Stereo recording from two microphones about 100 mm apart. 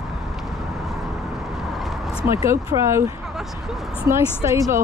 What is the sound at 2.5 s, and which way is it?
Speech, 30° right (ahead or behind).